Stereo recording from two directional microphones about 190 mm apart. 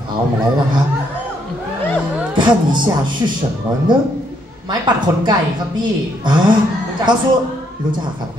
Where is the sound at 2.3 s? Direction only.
25° right (ahead or behind).